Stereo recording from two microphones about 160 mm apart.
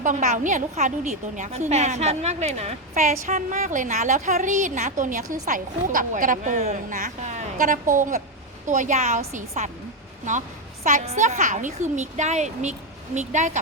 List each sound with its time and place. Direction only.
0.0 s a woman's voice: 50° right (ahead or behind)
10.8 s a woman's voice: 45° right (ahead or behind)